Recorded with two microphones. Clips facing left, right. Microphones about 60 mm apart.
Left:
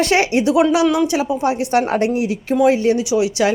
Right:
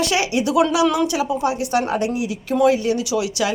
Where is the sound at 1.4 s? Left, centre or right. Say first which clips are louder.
Left 3 dB; left.